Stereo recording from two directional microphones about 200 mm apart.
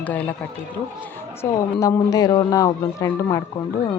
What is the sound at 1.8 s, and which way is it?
Speech, 15° left (ahead or behind).